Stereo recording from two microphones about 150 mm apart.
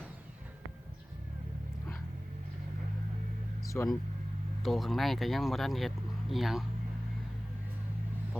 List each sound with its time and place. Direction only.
3.7 s speech: 10° left (ahead or behind)